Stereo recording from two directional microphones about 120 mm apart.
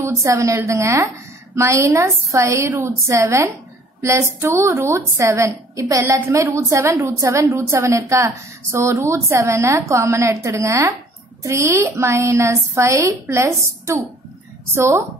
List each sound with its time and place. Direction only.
0.0 s a woman's voice: 25° right (ahead or behind)